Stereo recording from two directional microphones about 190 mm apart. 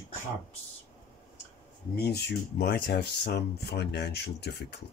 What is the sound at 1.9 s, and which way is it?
Speech, 55° left (ahead or behind).